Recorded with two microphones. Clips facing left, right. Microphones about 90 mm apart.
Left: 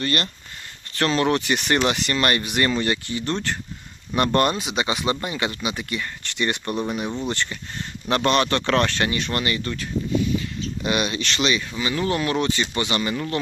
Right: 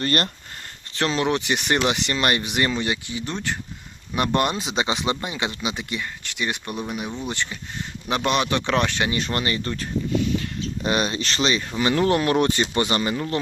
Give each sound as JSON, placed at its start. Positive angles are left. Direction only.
{"t": 0.0, "sound": "speech", "side_deg": -45}
{"t": 0.9, "sound": "speech", "side_deg": -15}
{"t": 4.5, "sound": "speech", "side_deg": -25}
{"t": 6.2, "sound": "speech", "side_deg": -5}
{"t": 9.1, "sound": "speech", "side_deg": -30}
{"t": 11.8, "sound": "speech", "side_deg": -55}
{"t": 13.0, "sound": "speech", "side_deg": -25}